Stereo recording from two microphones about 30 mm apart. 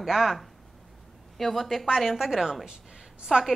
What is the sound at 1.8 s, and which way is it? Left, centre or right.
Speech, centre.